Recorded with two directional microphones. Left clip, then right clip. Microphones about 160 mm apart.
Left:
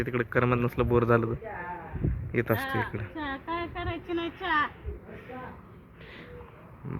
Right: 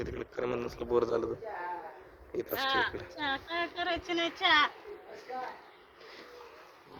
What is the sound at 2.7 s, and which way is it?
Speech, 10° right (ahead or behind).